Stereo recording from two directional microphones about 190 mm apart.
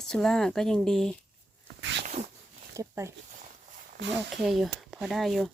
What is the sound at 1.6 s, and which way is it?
Sneeze, 65° right (ahead or behind).